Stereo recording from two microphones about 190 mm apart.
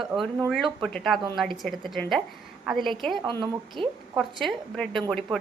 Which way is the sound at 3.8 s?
25° right (ahead or behind).